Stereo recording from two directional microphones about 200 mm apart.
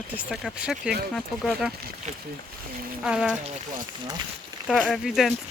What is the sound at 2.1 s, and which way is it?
Speech, 35° right (ahead or behind).